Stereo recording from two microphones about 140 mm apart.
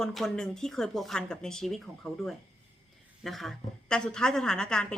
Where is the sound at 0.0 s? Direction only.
Centre (ahead or behind).